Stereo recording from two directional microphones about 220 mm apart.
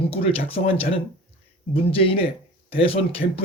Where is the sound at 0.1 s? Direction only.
25° left (ahead or behind).